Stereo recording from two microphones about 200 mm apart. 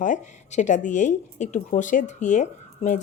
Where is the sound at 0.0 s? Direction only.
40° left (ahead or behind).